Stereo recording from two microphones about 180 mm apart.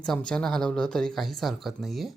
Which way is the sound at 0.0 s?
5° left (ahead or behind).